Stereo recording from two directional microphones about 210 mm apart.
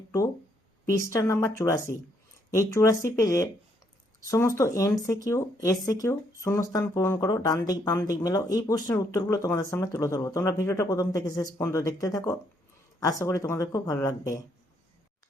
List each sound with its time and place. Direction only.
0.9 s speech: 15° left (ahead or behind)